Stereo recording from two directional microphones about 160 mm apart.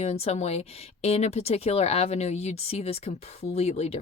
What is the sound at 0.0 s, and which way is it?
A woman's voice, 40° left (ahead or behind).